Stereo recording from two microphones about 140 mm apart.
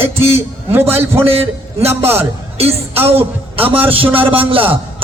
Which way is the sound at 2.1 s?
45° right (ahead or behind).